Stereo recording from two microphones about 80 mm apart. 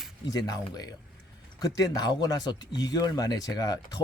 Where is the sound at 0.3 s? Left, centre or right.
Left.